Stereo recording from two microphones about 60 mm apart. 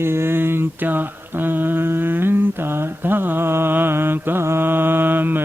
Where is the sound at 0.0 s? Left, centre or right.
Right.